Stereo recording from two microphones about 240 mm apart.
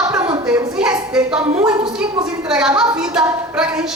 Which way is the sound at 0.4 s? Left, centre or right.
Centre.